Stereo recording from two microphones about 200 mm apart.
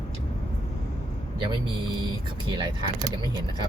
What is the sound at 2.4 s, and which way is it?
Speech, 20° right (ahead or behind).